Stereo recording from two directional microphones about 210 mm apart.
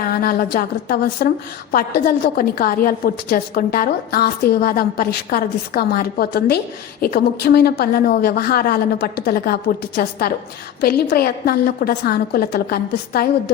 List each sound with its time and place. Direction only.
0.1 s a woman's voice: 45° left (ahead or behind)